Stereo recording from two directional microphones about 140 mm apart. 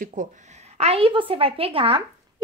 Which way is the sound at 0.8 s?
45° right (ahead or behind).